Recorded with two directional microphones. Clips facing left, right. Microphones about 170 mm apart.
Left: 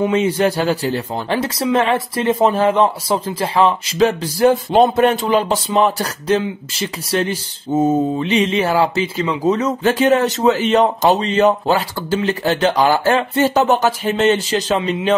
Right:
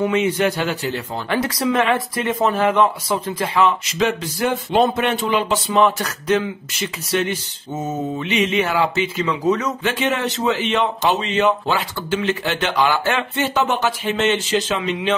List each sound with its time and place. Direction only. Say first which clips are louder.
0.0 s speech: left 2 dB; 35° left (ahead or behind)